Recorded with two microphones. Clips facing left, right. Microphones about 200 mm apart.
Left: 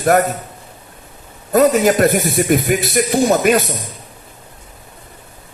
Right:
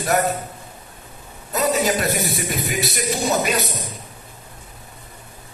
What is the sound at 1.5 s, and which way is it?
A man's voice, 50° left (ahead or behind).